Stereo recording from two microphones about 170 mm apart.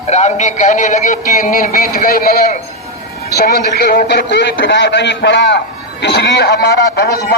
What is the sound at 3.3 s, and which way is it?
A man's voice, 70° left (ahead or behind).